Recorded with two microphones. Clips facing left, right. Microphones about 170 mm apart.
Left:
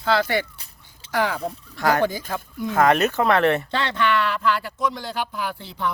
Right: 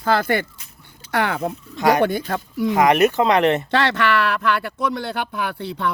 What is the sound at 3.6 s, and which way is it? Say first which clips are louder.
Speech: right 4 dB; 75° right (ahead or behind).